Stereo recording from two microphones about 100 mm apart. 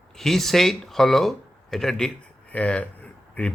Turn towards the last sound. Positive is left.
turn(degrees=15)  # may be behind; listen again after turning